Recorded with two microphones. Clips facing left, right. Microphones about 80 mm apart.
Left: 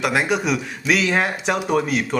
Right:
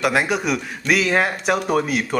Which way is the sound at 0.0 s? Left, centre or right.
Centre.